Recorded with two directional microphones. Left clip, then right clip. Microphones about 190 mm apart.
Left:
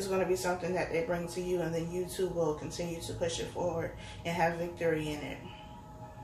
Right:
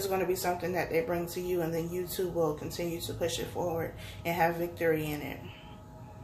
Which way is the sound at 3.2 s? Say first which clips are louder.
Even; 60° right (ahead or behind).